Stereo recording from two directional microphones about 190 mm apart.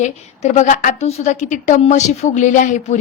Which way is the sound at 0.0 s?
40° left (ahead or behind).